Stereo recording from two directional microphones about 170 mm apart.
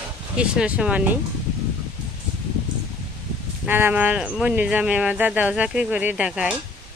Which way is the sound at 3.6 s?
10° right (ahead or behind).